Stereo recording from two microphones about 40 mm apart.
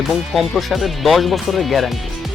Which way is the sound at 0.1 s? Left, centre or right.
Centre.